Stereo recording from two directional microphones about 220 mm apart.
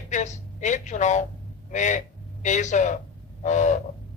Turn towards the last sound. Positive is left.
turn(degrees=35)  # may be behind; listen again after turning